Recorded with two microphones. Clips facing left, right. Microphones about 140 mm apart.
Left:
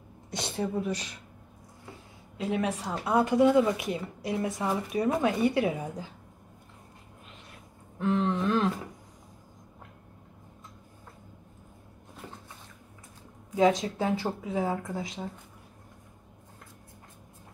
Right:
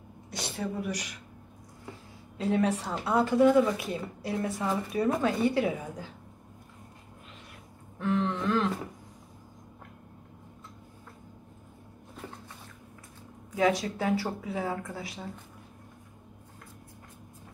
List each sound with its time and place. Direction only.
0.3 s speech: 25° left (ahead or behind)
2.3 s a woman's voice: 10° left (ahead or behind)
8.0 s a woman's voice: 20° left (ahead or behind)
13.6 s speech: 20° left (ahead or behind)